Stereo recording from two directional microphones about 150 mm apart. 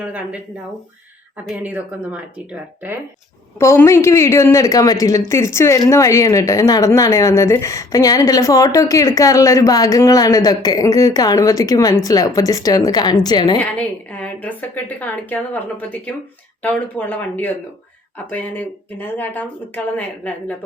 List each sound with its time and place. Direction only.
0.0 s speech: 10° right (ahead or behind)
1.5 s speech: 10° right (ahead or behind)
3.6 s speech: 20° left (ahead or behind)
13.7 s a woman's voice: 10° left (ahead or behind)